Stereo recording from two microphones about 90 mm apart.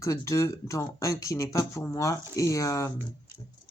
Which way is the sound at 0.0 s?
35° left (ahead or behind).